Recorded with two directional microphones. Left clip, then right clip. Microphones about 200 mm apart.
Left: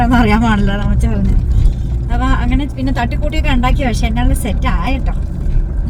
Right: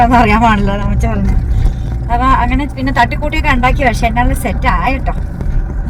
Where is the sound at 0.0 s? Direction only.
15° left (ahead or behind).